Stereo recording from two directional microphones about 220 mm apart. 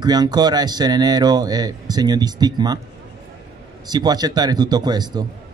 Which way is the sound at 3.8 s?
20° right (ahead or behind).